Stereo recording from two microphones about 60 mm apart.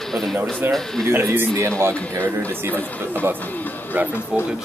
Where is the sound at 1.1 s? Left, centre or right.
Right.